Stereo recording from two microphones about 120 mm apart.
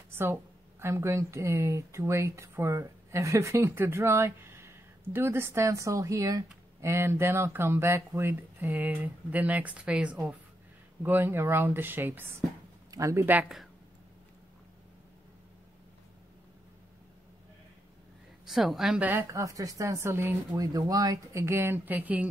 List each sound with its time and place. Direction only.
0.1 s speech: 20° right (ahead or behind)
18.4 s a woman's voice: 5° right (ahead or behind)
19.0 s speech: 20° right (ahead or behind)
20.5 s speech: 30° right (ahead or behind); by 22.3 s 15° right (ahead or behind)